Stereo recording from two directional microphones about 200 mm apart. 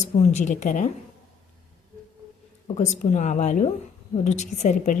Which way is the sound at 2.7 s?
35° left (ahead or behind).